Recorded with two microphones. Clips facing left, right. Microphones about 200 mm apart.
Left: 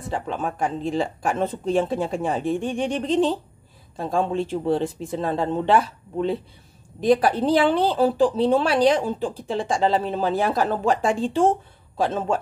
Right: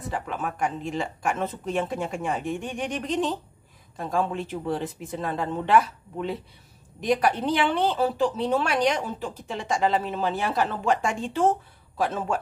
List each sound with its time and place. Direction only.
0.1 s speech: 30° left (ahead or behind)